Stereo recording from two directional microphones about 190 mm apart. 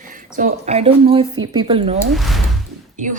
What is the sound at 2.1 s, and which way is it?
Speech, centre (ahead or behind).